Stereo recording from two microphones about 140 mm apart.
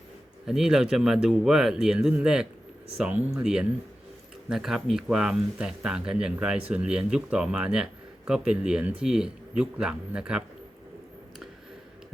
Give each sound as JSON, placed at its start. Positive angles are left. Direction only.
{"t": 0.4, "sound": "speech", "side_deg": -5}